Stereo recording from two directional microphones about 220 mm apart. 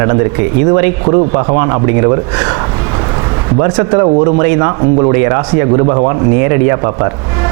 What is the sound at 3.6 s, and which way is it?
Speech, 20° right (ahead or behind).